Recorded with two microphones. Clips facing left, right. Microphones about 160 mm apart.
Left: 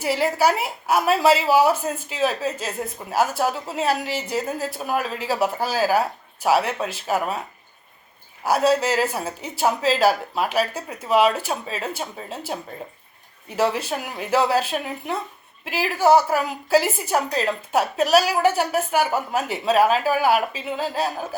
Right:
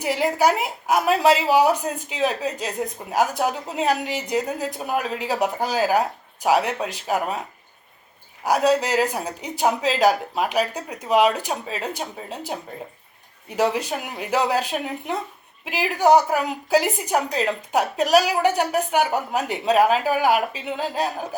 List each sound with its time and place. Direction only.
0.0 s a woman's voice: 15° right (ahead or behind)
8.4 s a woman's voice: 15° right (ahead or behind)
13.6 s a woman's voice: 15° right (ahead or behind)